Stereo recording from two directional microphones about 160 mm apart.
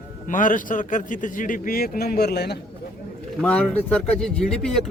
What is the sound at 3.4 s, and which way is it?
A man's voice, 10° left (ahead or behind).